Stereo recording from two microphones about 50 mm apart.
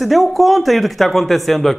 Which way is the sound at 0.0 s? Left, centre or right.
Centre.